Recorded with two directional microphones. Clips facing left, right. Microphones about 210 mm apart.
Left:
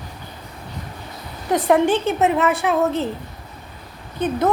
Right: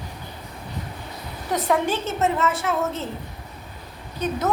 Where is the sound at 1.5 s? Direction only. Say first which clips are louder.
Left 5 dB; 50° left (ahead or behind).